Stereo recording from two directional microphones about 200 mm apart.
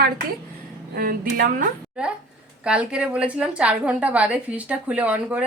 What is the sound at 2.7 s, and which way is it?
A woman's voice, 5° right (ahead or behind).